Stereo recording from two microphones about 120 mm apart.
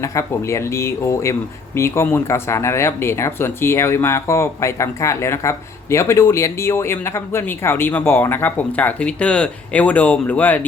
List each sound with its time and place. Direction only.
0.0 s speech: 25° left (ahead or behind)